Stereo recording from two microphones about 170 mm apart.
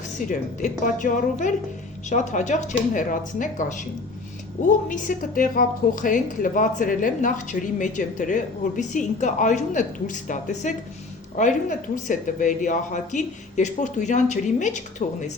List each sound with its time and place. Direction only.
0.2 s a woman's voice: 50° left (ahead or behind)
4.9 s a woman's voice: 50° left (ahead or behind)